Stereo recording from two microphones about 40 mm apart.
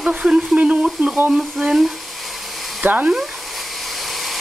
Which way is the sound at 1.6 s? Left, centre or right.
Centre.